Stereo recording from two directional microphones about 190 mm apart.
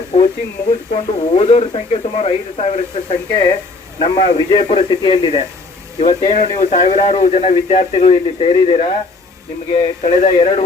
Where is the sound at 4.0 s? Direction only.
30° left (ahead or behind).